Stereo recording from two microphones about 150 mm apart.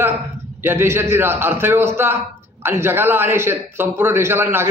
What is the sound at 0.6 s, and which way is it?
A man's voice, 15° right (ahead or behind).